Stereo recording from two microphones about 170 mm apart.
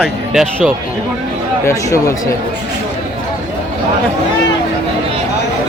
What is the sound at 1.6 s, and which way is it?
Speech, 15° left (ahead or behind).